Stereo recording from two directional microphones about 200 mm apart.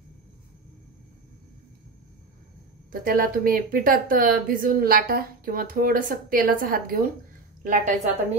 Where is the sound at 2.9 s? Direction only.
45° right (ahead or behind).